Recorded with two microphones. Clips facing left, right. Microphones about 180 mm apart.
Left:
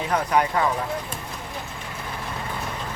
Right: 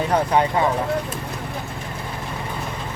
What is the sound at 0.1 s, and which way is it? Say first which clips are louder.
Speech: right 1 dB; 25° right (ahead or behind).